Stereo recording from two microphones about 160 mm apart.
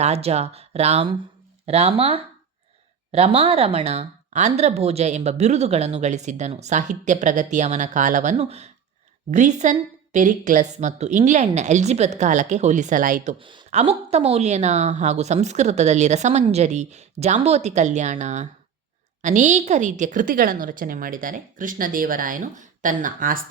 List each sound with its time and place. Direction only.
0.0 s speech: 40° right (ahead or behind)
13.4 s speech: 30° right (ahead or behind)
13.7 s a woman's voice: 45° right (ahead or behind)